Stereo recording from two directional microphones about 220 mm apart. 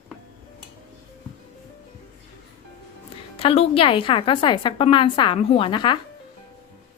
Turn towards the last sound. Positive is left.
turn(degrees=20)  # may be behind; listen again after turning